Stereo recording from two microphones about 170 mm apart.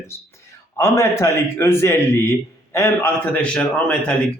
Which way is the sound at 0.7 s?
15° left (ahead or behind).